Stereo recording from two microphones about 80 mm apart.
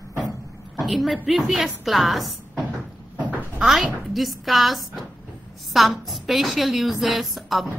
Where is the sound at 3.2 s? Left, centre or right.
Centre.